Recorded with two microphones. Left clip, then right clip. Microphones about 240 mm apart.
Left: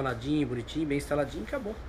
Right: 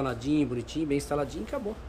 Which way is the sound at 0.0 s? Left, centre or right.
Centre.